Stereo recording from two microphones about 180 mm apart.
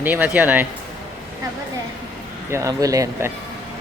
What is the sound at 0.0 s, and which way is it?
Speech, 10° right (ahead or behind).